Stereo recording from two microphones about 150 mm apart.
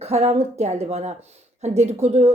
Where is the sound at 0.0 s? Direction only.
45° right (ahead or behind).